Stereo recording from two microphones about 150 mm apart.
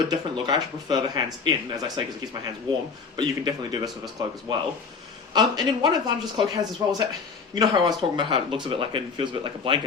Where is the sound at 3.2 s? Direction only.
30° right (ahead or behind).